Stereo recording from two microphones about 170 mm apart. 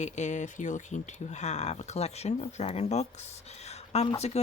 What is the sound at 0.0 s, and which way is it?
Speech, 45° left (ahead or behind).